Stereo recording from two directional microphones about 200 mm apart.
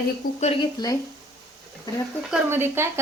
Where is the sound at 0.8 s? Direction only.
20° left (ahead or behind).